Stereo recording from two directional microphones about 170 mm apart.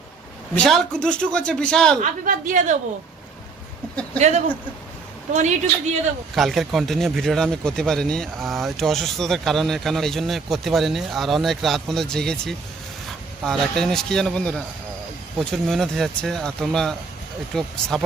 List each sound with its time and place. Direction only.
0.5 s speech: 5° left (ahead or behind)
2.0 s a woman's voice: 50° right (ahead or behind)
4.2 s a woman's voice: 45° right (ahead or behind)
6.3 s speech: centre (ahead or behind)